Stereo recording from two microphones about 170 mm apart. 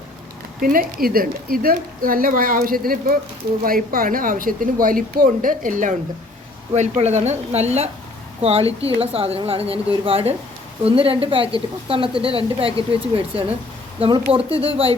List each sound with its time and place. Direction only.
0.6 s a woman's voice: 55° right (ahead or behind); by 14.9 s 35° right (ahead or behind)